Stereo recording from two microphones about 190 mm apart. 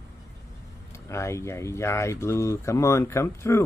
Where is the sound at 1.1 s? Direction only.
15° left (ahead or behind).